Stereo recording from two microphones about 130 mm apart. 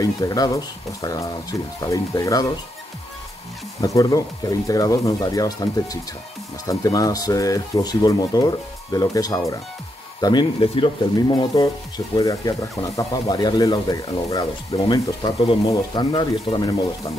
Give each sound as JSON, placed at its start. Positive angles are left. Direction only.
{"t": 0.0, "sound": "speech", "side_deg": 30}
{"t": 3.8, "sound": "speech", "side_deg": 25}
{"t": 10.6, "sound": "speech", "side_deg": 45}
{"t": 11.1, "sound": "speech", "side_deg": 35}